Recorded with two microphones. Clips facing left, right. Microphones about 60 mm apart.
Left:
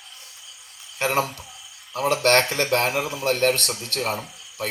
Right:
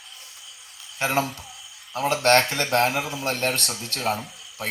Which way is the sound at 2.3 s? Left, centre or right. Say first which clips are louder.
Even; left.